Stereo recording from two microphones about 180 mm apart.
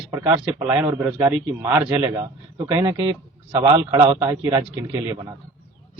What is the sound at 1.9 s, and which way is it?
A man's voice, 25° right (ahead or behind).